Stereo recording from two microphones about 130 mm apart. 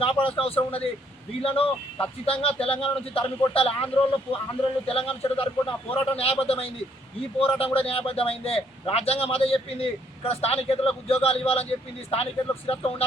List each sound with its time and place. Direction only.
0.0 s a man's voice: 40° left (ahead or behind)
4.9 s a man's voice: 45° left (ahead or behind)